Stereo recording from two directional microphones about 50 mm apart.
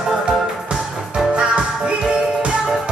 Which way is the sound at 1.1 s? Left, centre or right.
Centre.